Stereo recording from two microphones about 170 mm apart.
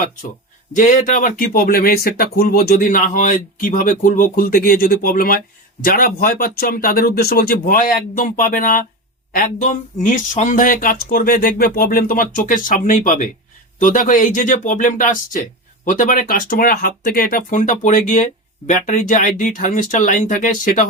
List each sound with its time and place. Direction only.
0.8 s speech: 50° left (ahead or behind)